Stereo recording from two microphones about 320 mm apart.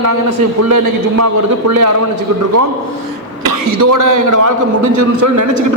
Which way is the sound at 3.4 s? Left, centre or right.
Right.